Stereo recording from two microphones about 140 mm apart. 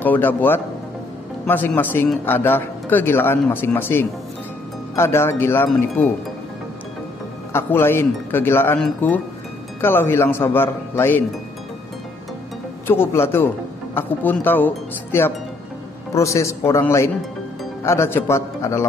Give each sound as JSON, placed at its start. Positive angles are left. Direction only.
{"t": 0.0, "sound": "speech", "side_deg": 15}
{"t": 7.5, "sound": "speech", "side_deg": 15}
{"t": 12.8, "sound": "a man's voice", "side_deg": 15}